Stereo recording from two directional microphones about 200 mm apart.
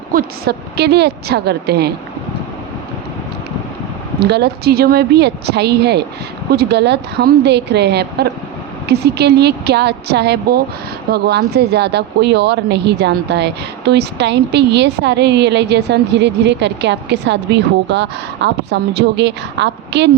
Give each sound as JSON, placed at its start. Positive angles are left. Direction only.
{"t": 0.1, "sound": "speech", "side_deg": -50}
{"t": 4.2, "sound": "speech", "side_deg": -55}